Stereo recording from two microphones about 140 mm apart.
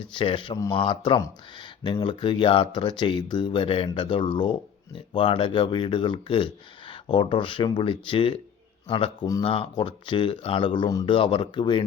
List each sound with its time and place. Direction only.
0.0 s speech: 35° left (ahead or behind)